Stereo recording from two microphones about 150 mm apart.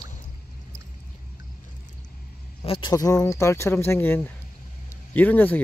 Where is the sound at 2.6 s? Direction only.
40° left (ahead or behind).